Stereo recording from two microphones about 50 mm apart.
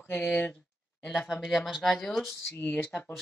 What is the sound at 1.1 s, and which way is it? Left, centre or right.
Speech, centre.